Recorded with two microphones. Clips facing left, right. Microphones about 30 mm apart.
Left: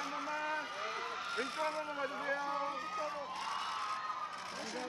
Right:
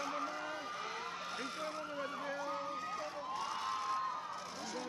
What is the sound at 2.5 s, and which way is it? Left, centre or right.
Speech, centre.